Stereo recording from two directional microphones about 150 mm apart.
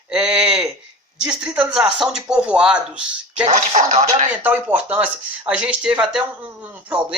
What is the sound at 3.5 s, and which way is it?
Speech, 55° right (ahead or behind).